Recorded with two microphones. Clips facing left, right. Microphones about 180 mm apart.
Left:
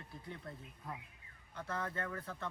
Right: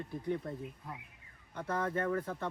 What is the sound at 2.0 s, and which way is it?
Speech, 35° right (ahead or behind).